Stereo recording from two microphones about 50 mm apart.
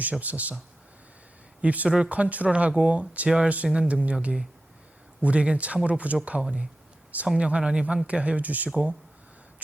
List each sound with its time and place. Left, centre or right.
0.0 s speech: right
1.6 s speech: right